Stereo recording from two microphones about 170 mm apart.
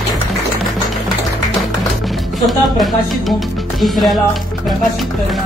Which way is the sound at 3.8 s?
Centre (ahead or behind).